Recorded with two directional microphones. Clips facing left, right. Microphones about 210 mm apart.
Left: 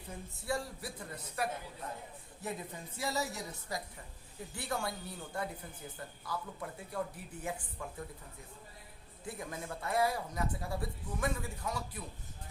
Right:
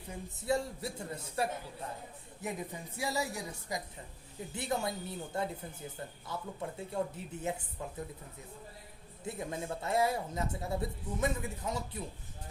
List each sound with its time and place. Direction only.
0.3 s speech: 20° right (ahead or behind)
2.4 s a woman's voice: 15° right (ahead or behind)
9.2 s speech: 25° right (ahead or behind)